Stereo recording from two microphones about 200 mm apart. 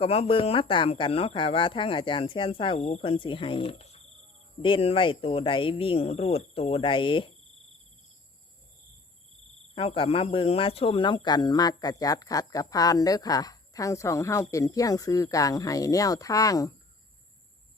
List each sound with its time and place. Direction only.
0.0 s speech: 30° left (ahead or behind)
9.7 s speech: 25° left (ahead or behind)